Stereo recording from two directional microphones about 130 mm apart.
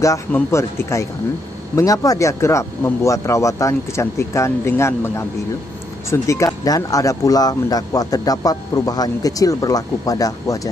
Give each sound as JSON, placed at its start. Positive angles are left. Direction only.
{"t": 0.3, "sound": "speech", "side_deg": 20}